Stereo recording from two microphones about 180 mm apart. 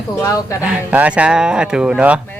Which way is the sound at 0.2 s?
15° left (ahead or behind).